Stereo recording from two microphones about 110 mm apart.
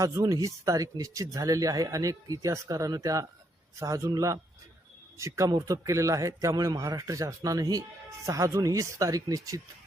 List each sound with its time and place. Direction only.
0.0 s speech: 30° right (ahead or behind)